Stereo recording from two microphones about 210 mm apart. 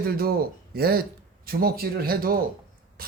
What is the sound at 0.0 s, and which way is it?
Speech, 45° right (ahead or behind).